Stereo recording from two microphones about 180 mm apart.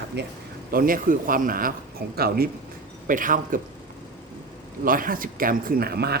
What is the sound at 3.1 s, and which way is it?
Speech, 50° right (ahead or behind).